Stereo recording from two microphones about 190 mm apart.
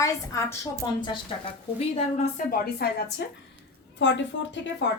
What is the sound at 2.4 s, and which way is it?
Speech, 55° left (ahead or behind).